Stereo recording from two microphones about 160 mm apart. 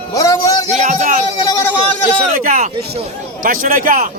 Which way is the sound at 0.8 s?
50° right (ahead or behind).